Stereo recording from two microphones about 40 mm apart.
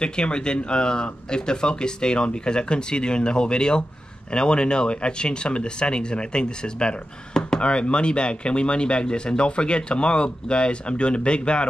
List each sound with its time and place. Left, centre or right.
0.0 s speech: left